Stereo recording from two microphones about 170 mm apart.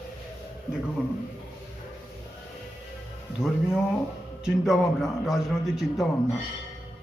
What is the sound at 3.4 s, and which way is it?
A man's voice, 5° right (ahead or behind).